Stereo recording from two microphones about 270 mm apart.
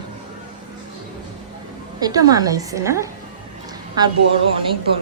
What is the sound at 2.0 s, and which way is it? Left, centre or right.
A woman's voice, centre.